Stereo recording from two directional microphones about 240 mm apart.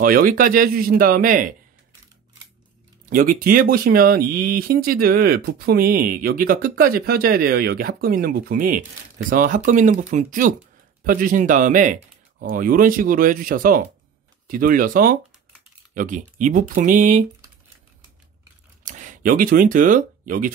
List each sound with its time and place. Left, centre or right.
0.0 s speech: right
3.1 s speech: right
18.9 s speech: right